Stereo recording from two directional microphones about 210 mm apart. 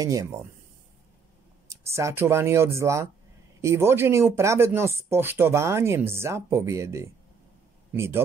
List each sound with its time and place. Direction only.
0.0 s speech: 15° right (ahead or behind)
1.7 s speech: 15° right (ahead or behind)